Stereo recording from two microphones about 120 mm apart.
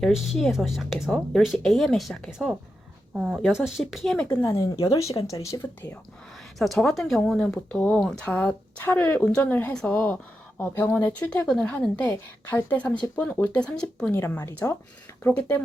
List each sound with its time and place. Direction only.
0.0 s speech: 5° right (ahead or behind)
4.4 s a woman's voice: 20° left (ahead or behind)
6.6 s a woman's voice: centre (ahead or behind)